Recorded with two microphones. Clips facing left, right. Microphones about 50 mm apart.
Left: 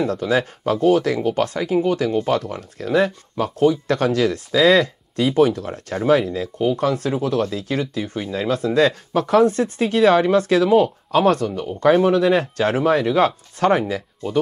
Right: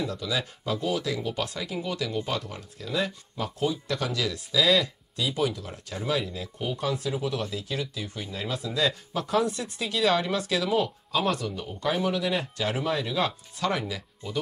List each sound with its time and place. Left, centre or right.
0.0 s speech: left